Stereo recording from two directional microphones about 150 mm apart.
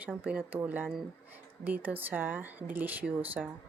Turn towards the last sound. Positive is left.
turn(degrees=-10)  # may be behind; listen again after turning